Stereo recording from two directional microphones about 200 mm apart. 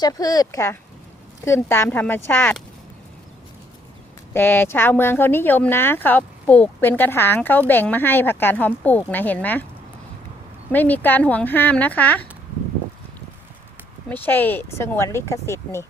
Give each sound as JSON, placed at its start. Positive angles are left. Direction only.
{"t": 0.0, "sound": "speech", "side_deg": 20}
{"t": 4.4, "sound": "speech", "side_deg": 10}
{"t": 10.7, "sound": "speech", "side_deg": 10}
{"t": 14.1, "sound": "speech", "side_deg": 10}